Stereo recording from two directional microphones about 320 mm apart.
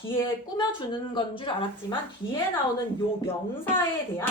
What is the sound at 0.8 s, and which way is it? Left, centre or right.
A woman's voice, centre.